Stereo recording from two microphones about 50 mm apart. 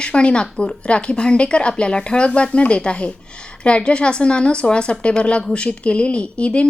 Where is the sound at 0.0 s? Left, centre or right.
Left.